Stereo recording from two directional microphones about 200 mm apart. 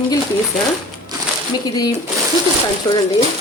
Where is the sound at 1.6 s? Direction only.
20° left (ahead or behind).